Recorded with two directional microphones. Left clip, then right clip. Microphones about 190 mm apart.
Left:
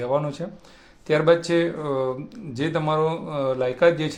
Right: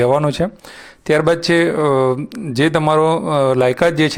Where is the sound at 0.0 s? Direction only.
45° right (ahead or behind).